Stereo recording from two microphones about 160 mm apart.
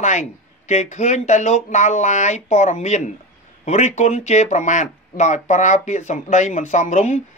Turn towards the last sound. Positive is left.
turn(degrees=45)  # may be behind; listen again after turning